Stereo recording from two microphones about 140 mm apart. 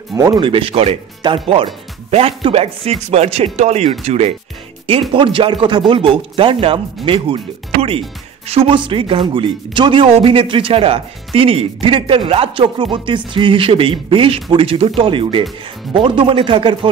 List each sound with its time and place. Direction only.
0.1 s speech: 25° right (ahead or behind)
0.4 s speech: 40° right (ahead or behind)
2.0 s speech: 45° right (ahead or behind)
5.1 s speech: 40° right (ahead or behind)